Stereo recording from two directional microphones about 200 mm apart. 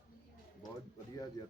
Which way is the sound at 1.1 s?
20° left (ahead or behind).